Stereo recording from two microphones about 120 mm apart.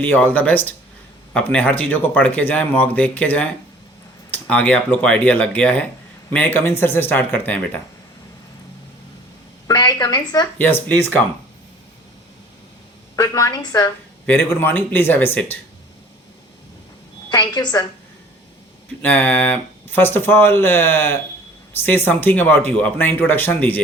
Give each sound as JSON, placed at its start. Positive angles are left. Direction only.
{"t": 0.0, "sound": "speech", "side_deg": 15}
{"t": 9.6, "sound": "a woman's voice", "side_deg": 35}
{"t": 10.6, "sound": "speech", "side_deg": 15}
{"t": 13.1, "sound": "a woman's voice", "side_deg": 30}
{"t": 14.3, "sound": "speech", "side_deg": 15}
{"t": 17.2, "sound": "a woman's voice", "side_deg": 40}
{"t": 19.0, "sound": "speech", "side_deg": 15}